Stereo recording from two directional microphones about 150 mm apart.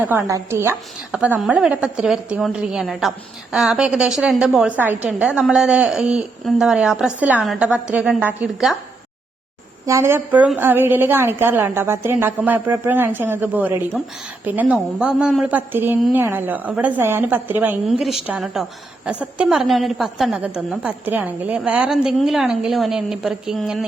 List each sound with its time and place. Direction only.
0.0 s a woman's voice: 15° right (ahead or behind)
1.1 s a woman's voice: 5° right (ahead or behind)
9.8 s a woman's voice: 20° right (ahead or behind)
17.8 s a woman's voice: centre (ahead or behind)